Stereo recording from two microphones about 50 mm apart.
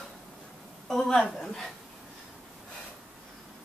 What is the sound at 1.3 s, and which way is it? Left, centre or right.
Speech, centre.